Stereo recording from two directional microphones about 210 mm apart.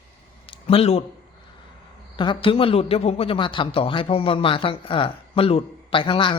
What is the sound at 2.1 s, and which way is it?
A woman's voice, 20° left (ahead or behind).